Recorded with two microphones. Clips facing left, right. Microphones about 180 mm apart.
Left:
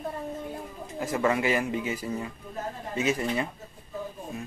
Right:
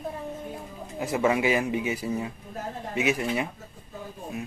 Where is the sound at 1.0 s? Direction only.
15° right (ahead or behind).